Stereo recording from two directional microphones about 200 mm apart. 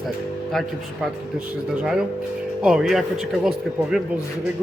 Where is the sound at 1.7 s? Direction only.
5° right (ahead or behind).